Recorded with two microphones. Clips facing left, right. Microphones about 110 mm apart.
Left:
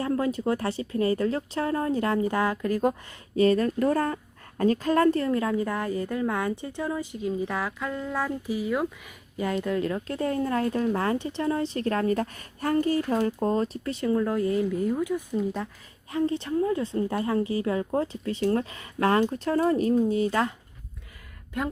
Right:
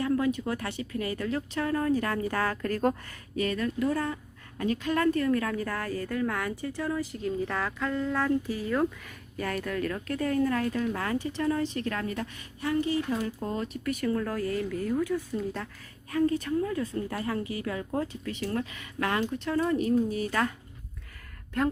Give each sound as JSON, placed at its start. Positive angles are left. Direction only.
{"t": 0.0, "sound": "a woman's voice", "side_deg": 35}
{"t": 3.3, "sound": "a woman's voice", "side_deg": 35}
{"t": 5.1, "sound": "a woman's voice", "side_deg": 25}
{"t": 16.1, "sound": "a woman's voice", "side_deg": 25}